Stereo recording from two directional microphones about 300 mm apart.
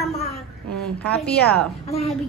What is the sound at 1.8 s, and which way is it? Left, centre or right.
Speech, centre.